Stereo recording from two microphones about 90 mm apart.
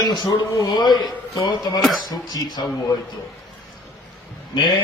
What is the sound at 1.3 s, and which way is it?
Speech, 45° left (ahead or behind).